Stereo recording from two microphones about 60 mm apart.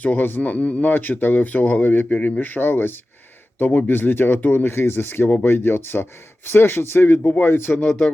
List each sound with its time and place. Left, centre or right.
0.0 s speech: left
7.4 s speech: left
7.9 s speech: centre